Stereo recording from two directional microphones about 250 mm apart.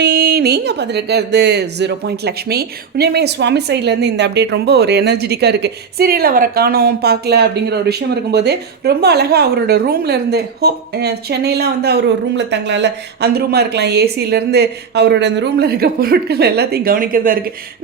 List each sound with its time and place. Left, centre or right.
0.0 s speech: right